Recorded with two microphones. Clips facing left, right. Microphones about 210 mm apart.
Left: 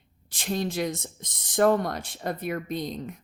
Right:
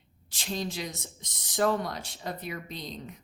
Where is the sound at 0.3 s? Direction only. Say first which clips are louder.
Left 5 dB; 50° left (ahead or behind).